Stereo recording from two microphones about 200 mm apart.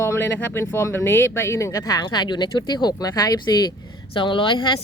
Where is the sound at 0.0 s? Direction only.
10° left (ahead or behind).